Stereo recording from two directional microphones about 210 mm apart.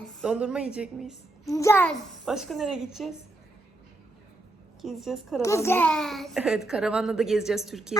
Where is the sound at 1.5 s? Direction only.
15° left (ahead or behind); by 3.1 s centre (ahead or behind).